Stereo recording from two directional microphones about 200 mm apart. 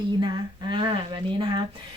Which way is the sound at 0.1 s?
20° right (ahead or behind).